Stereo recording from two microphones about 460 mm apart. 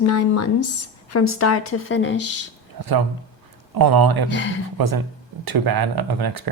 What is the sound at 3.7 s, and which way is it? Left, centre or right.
Speech, right.